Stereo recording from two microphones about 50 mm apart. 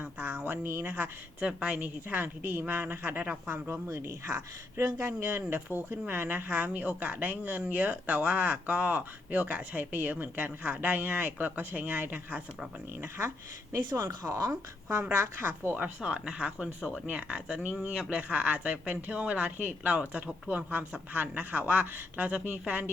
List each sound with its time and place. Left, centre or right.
0.0 s a sound: right
1.6 s speech: right
2.2 s a woman's voice: right
3.4 s speech: right
3.8 s speech: right
4.8 s speech: right
5.2 s a woman's voice: right
13.0 s speech: right
13.7 s speech: right
15.1 s speech: right
15.4 s speech: right
16.0 s speech: centre; by 22.9 s right